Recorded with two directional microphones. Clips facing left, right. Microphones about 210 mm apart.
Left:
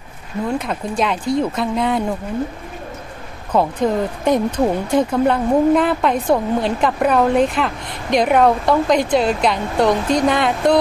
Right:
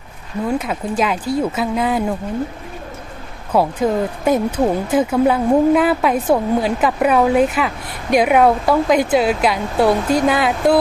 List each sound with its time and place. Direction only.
0.5 s speech: 5° right (ahead or behind)
3.5 s speech: 5° right (ahead or behind)